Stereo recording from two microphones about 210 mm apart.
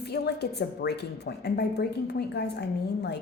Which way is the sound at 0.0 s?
50° left (ahead or behind).